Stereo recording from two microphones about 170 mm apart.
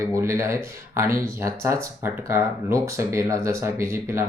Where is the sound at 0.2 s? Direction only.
15° right (ahead or behind).